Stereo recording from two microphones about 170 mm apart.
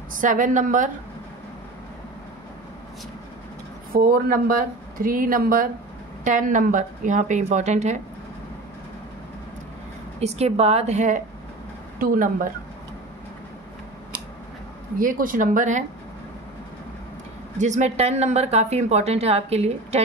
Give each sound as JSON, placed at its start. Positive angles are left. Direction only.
{"t": 0.2, "sound": "a woman's voice", "side_deg": -50}
{"t": 3.9, "sound": "a woman's voice", "side_deg": -60}
{"t": 10.2, "sound": "a woman's voice", "side_deg": -40}
{"t": 15.0, "sound": "a woman's voice", "side_deg": -55}
{"t": 17.6, "sound": "a woman's voice", "side_deg": -45}